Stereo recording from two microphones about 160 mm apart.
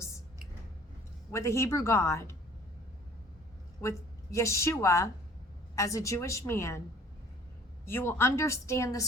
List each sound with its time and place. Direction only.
1.3 s a woman's voice: 20° left (ahead or behind)
3.8 s a woman's voice: 20° left (ahead or behind)
7.9 s a woman's voice: 15° left (ahead or behind)